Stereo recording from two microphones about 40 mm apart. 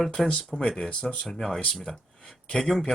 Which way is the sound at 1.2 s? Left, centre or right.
Centre.